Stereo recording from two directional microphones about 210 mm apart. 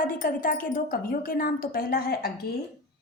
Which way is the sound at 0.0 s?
40° left (ahead or behind).